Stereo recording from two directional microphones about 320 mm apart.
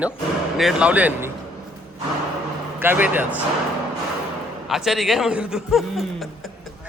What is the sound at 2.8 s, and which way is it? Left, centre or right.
Speech, centre.